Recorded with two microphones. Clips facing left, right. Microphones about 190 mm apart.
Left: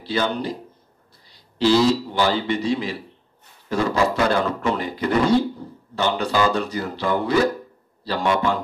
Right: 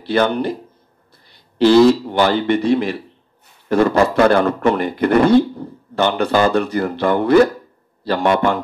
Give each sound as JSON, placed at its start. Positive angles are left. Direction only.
{"t": 0.0, "sound": "a man's voice", "side_deg": -60}